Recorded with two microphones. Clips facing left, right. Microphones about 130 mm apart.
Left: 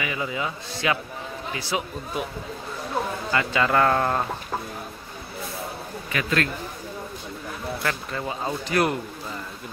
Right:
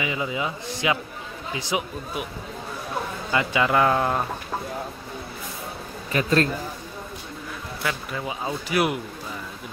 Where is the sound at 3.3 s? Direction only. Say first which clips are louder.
Right 1 dB; 15° right (ahead or behind).